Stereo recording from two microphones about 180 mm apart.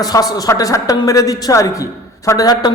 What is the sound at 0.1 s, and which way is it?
A man's voice, 20° left (ahead or behind).